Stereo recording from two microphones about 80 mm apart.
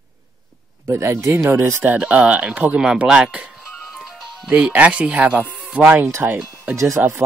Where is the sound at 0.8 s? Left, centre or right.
Right.